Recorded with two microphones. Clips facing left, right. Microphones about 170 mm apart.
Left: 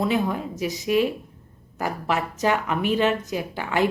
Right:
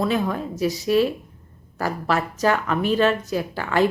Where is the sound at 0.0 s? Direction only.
15° left (ahead or behind).